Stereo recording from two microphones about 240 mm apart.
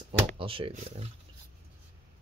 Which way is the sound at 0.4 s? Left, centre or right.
Right.